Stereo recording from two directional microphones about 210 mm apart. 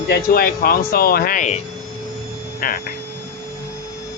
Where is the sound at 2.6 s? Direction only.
45° left (ahead or behind).